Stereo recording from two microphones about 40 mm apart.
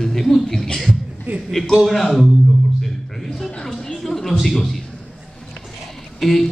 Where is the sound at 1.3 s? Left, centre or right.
Right.